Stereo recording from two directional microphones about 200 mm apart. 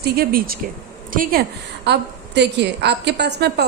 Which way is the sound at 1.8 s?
55° right (ahead or behind).